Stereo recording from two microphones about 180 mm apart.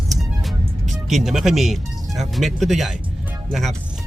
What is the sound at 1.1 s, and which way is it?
Speech, centre (ahead or behind).